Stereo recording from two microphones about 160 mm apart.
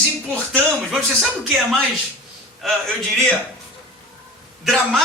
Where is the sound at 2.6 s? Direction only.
Centre (ahead or behind).